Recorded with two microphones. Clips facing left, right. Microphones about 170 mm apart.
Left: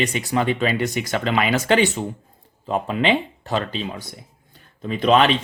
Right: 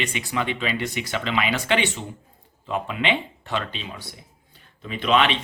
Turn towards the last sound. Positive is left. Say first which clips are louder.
# left 4 dB
turn(degrees=40)  # may be behind; listen again after turning